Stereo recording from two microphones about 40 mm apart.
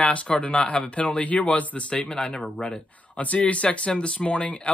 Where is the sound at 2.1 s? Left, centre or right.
Centre.